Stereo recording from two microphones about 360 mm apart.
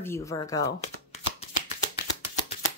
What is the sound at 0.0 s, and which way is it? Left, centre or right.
Speech, centre.